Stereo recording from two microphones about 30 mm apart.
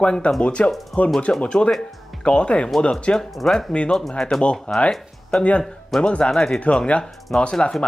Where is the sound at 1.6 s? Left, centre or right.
Left.